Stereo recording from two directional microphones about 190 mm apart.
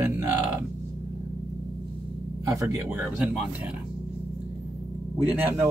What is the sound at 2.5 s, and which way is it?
Speech, 15° right (ahead or behind).